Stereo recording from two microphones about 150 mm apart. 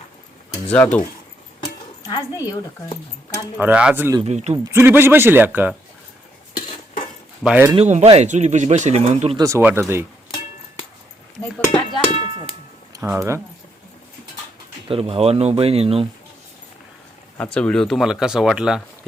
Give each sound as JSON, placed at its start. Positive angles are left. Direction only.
{"t": 0.7, "sound": "speech", "side_deg": 10}
{"t": 1.6, "sound": "a sound", "side_deg": 25}
{"t": 3.6, "sound": "a man's voice", "side_deg": -10}
{"t": 4.2, "sound": "speech", "side_deg": -45}
{"t": 4.7, "sound": "a man's voice", "side_deg": -15}
{"t": 7.4, "sound": "a man's voice", "side_deg": -10}
{"t": 7.8, "sound": "speech", "side_deg": -45}
{"t": 9.4, "sound": "a man's voice", "side_deg": -15}
{"t": 11.7, "sound": "cowbell", "side_deg": 30}
{"t": 12.1, "sound": "a sound", "side_deg": 45}
{"t": 13.0, "sound": "a man's voice", "side_deg": -15}
{"t": 14.8, "sound": "speech", "side_deg": -40}
{"t": 17.3, "sound": "speech", "side_deg": 5}